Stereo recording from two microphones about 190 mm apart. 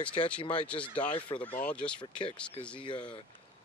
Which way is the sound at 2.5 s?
25° left (ahead or behind).